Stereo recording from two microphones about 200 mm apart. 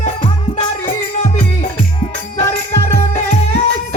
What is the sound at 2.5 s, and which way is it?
Music, 30° left (ahead or behind).